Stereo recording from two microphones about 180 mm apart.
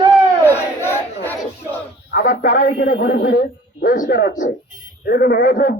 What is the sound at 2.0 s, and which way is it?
A man's voice, 55° left (ahead or behind).